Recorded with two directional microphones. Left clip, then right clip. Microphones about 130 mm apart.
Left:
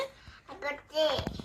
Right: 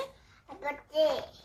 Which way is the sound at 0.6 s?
15° right (ahead or behind).